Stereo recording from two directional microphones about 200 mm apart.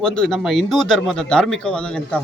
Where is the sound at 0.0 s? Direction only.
5° left (ahead or behind).